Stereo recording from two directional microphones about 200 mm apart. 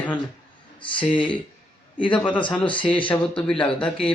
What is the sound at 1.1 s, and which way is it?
Speech, 25° left (ahead or behind).